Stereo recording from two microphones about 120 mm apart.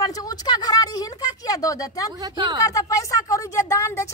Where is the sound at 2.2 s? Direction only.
40° right (ahead or behind).